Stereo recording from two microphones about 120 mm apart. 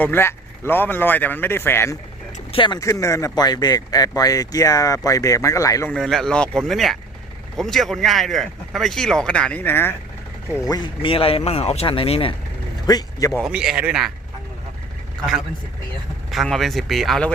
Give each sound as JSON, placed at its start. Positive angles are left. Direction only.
{"t": 0.0, "sound": "speech", "side_deg": 20}
{"t": 2.5, "sound": "speech", "side_deg": 40}
{"t": 2.8, "sound": "speech", "side_deg": 25}
{"t": 5.9, "sound": "speech", "side_deg": 5}
{"t": 10.6, "sound": "speech", "side_deg": 30}
{"t": 11.0, "sound": "speech", "side_deg": 50}
{"t": 12.9, "sound": "speech", "side_deg": 30}
{"t": 13.4, "sound": "speech", "side_deg": -5}
{"t": 16.3, "sound": "speech", "side_deg": 0}